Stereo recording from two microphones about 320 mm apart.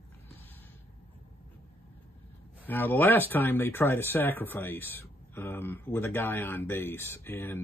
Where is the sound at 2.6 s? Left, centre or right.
Centre.